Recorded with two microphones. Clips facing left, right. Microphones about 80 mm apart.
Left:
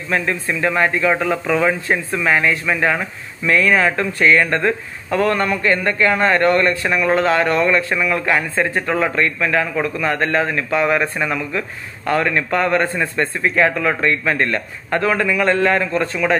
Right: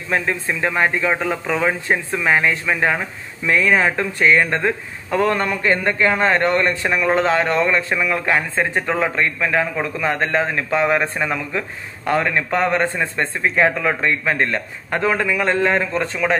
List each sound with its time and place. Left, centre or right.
0.1 s speech: right